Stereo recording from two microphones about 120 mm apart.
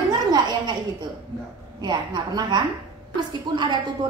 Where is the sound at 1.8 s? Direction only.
35° right (ahead or behind).